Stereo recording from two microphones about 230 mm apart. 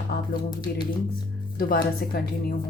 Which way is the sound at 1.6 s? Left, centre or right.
Left.